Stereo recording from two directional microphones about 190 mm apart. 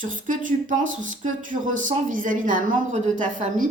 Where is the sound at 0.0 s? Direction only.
45° right (ahead or behind).